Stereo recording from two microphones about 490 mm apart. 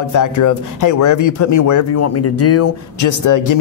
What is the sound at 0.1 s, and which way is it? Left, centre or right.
Speech, left.